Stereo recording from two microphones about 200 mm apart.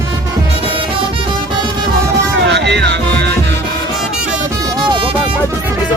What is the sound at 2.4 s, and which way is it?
Music, 60° right (ahead or behind).